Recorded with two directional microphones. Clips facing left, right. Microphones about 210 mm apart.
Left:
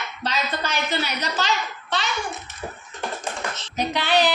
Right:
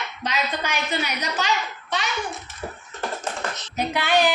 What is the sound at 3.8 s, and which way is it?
Speech, 10° right (ahead or behind).